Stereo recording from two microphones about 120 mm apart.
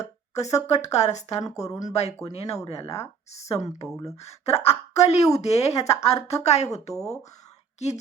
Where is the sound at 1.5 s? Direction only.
30° left (ahead or behind).